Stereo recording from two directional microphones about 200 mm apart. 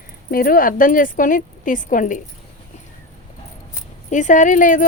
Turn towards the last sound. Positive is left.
turn(degrees=40)  # may be behind; listen again after turning